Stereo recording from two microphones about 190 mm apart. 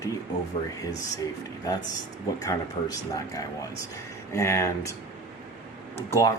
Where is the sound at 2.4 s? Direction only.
15° left (ahead or behind).